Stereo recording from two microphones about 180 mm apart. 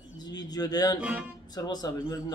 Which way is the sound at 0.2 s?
20° left (ahead or behind).